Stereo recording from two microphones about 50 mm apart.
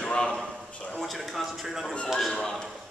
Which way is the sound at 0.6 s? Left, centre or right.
Left.